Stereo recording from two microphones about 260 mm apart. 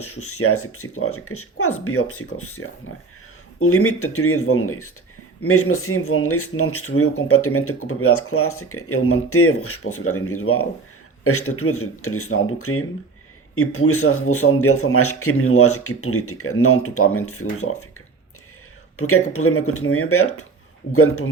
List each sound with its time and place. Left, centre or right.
0.0 s speech: left
18.9 s speech: left